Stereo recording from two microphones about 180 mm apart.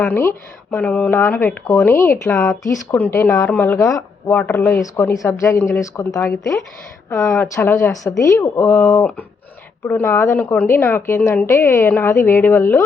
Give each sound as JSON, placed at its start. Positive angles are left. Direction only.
{"t": 0.0, "sound": "speech", "side_deg": 10}